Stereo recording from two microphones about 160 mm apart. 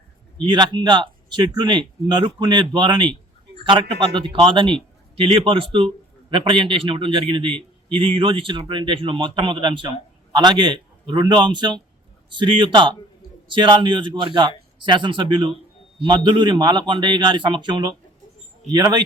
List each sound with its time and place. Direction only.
0.5 s a man's voice: 30° right (ahead or behind)